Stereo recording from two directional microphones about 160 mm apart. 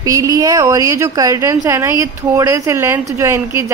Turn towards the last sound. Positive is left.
turn(degrees=-15)  # may be behind; listen again after turning